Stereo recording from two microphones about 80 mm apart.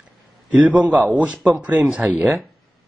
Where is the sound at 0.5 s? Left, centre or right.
Centre.